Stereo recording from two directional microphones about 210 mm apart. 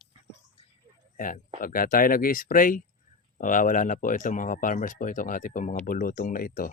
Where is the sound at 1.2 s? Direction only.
40° left (ahead or behind).